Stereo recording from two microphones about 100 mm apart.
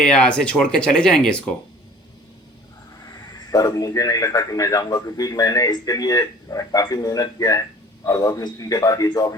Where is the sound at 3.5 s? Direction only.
40° left (ahead or behind).